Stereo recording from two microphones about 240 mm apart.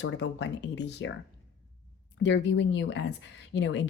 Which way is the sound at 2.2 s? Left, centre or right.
Left.